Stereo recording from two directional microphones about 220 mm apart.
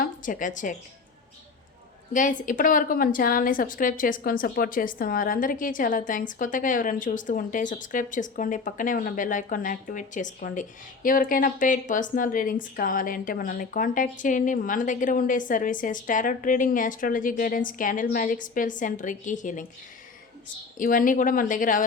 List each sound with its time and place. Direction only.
0.0 s a woman's voice: 35° left (ahead or behind)
2.1 s a woman's voice: 35° left (ahead or behind)
20.7 s a woman's voice: 40° left (ahead or behind)